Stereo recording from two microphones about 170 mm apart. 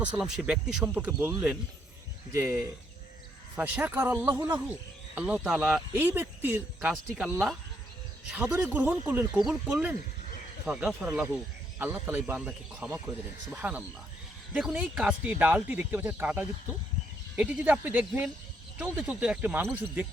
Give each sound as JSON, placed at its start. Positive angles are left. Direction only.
{"t": 0.0, "sound": "speech", "side_deg": -5}
{"t": 2.3, "sound": "speech", "side_deg": -15}